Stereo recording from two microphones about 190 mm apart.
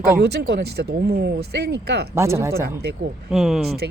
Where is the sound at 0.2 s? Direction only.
60° right (ahead or behind).